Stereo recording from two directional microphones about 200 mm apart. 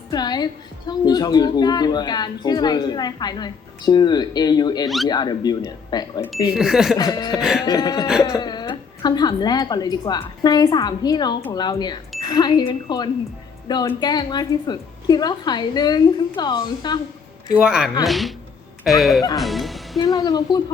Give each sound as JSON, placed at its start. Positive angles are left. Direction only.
{"t": 0.1, "sound": "a woman's voice", "side_deg": 20}
{"t": 6.5, "sound": "speech", "side_deg": 0}
{"t": 6.9, "sound": "a woman's voice", "side_deg": 20}
{"t": 7.3, "sound": "speech", "side_deg": 0}
{"t": 7.6, "sound": "a woman's voice", "side_deg": 20}
{"t": 17.5, "sound": "speech", "side_deg": -5}
{"t": 20.0, "sound": "a woman's voice", "side_deg": 15}